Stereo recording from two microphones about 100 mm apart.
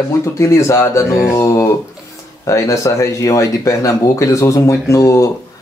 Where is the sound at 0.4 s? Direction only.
30° left (ahead or behind).